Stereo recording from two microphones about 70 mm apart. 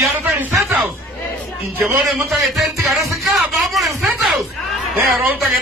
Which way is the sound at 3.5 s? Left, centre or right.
Centre.